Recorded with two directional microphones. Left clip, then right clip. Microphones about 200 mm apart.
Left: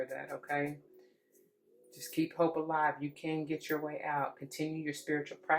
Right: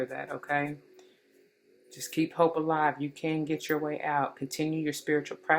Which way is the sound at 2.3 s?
45° right (ahead or behind).